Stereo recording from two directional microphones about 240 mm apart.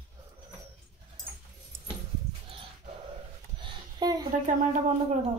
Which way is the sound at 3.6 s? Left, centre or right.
Centre.